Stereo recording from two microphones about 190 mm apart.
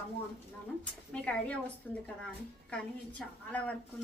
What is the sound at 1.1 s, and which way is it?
A woman's voice, 5° left (ahead or behind).